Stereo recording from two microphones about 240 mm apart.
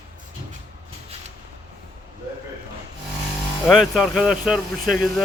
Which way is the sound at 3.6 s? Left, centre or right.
Centre.